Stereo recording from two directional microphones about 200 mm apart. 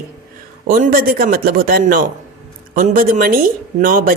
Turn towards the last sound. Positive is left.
turn(degrees=-45)  # may be behind; listen again after turning